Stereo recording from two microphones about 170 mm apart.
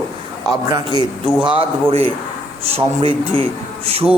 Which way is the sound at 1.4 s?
35° right (ahead or behind).